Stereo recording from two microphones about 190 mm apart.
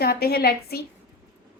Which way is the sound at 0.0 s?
55° left (ahead or behind).